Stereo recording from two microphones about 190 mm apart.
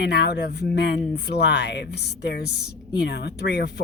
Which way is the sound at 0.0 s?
60° left (ahead or behind).